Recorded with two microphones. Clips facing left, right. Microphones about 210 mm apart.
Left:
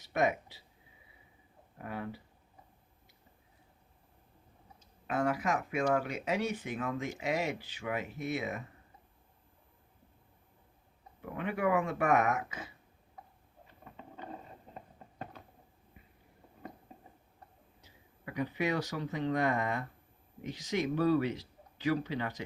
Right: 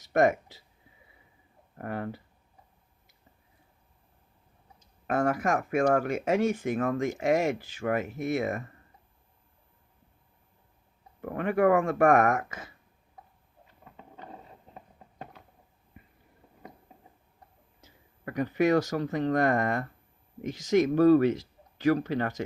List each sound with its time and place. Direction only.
0.0 s speech: 45° right (ahead or behind)
1.8 s speech: 50° right (ahead or behind)
5.0 s speech: 50° right (ahead or behind)
11.2 s speech: 55° right (ahead or behind)
17.7 s speech: 45° right (ahead or behind)